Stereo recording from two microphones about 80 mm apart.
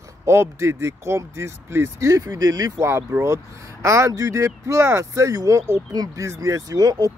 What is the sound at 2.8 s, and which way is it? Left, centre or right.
Speech, right.